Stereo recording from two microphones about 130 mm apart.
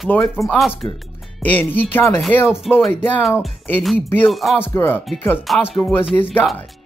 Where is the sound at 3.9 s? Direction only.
15° left (ahead or behind).